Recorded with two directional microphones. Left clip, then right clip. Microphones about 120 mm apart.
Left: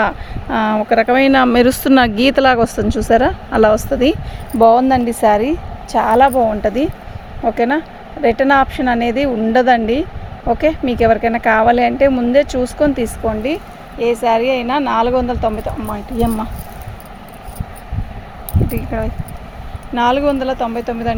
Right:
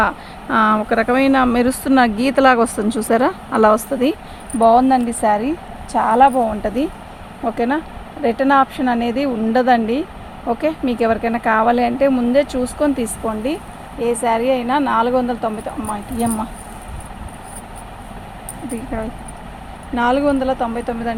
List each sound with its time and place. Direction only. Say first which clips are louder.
0.4 s speech: right 1 dB; 25° left (ahead or behind); by 2.4 s 65° left (ahead or behind)
2.4 s a woman's voice: right 2 dB; 40° left (ahead or behind); by 4.7 s 65° left (ahead or behind)
6.1 s a woman's voice: left 1 dB; 90° left; by 13.6 s 65° left (ahead or behind)
14.0 s speech: left 3 dB; 80° left
18.9 s speech: left 4 dB; 90° left
20.0 s speech: left 2 dB; 70° left (ahead or behind); by 21.2 s 90° left